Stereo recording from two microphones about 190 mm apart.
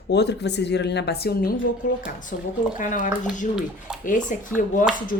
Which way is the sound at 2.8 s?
45° left (ahead or behind).